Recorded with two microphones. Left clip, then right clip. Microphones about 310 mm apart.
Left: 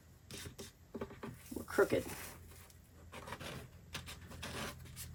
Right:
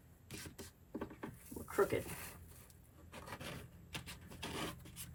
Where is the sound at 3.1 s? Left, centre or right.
Centre.